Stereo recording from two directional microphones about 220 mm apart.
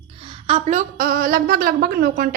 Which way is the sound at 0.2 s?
25° right (ahead or behind).